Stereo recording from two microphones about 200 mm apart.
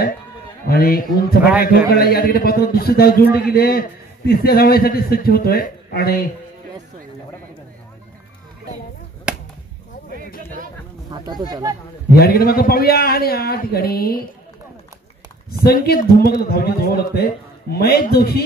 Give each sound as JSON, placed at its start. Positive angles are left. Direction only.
{"t": 0.7, "sound": "a man's voice", "side_deg": 50}
{"t": 11.1, "sound": "speech", "side_deg": -20}
{"t": 12.2, "sound": "a man's voice", "side_deg": 50}
{"t": 15.6, "sound": "a man's voice", "side_deg": 50}